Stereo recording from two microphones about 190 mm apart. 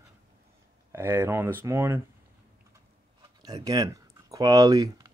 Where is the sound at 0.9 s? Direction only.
10° right (ahead or behind).